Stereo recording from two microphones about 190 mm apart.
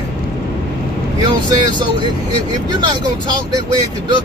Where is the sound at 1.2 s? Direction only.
25° right (ahead or behind).